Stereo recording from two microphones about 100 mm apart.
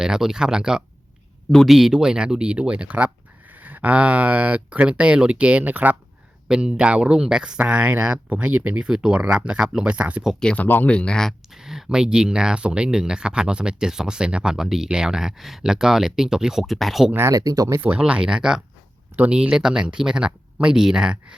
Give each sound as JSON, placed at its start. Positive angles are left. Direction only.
{"t": 0.0, "sound": "speech", "side_deg": -5}
{"t": 10.4, "sound": "speech", "side_deg": 15}
{"t": 17.1, "sound": "speech", "side_deg": -25}
{"t": 17.3, "sound": "speech", "side_deg": -35}
{"t": 17.7, "sound": "speech", "side_deg": -20}
{"t": 18.0, "sound": "speech", "side_deg": -10}